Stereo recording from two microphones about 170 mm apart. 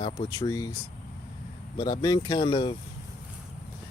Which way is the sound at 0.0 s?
25° left (ahead or behind).